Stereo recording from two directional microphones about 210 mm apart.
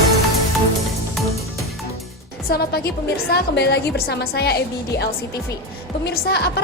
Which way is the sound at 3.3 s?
50° left (ahead or behind).